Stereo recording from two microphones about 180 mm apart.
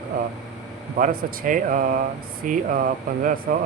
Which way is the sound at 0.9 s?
45° right (ahead or behind).